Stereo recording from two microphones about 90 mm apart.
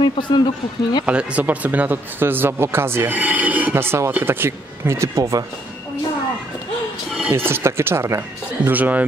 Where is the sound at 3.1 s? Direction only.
15° right (ahead or behind); by 5.5 s 40° right (ahead or behind).